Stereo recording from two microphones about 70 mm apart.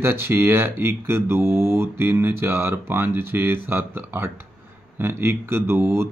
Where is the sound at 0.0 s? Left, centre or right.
Right.